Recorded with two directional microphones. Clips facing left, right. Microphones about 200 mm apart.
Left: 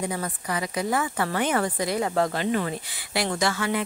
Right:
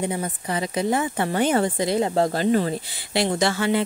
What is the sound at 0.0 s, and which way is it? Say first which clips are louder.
Speech: right 3 dB; 25° right (ahead or behind).